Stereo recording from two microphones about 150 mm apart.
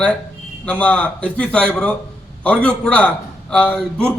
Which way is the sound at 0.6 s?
10° left (ahead or behind).